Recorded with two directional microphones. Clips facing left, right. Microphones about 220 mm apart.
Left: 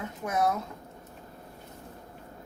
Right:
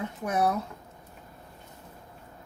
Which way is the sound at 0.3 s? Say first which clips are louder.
Right 1 dB; 30° right (ahead or behind).